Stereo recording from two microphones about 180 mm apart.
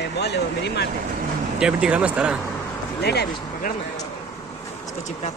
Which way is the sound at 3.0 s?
65° left (ahead or behind).